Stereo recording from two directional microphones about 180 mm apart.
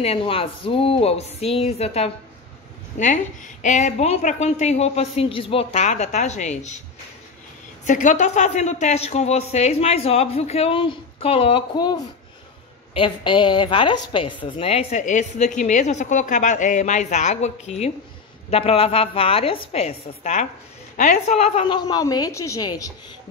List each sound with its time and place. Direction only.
0.0 s a woman's voice: 30° left (ahead or behind)
7.8 s a woman's voice: 45° left (ahead or behind); by 22.9 s 20° left (ahead or behind)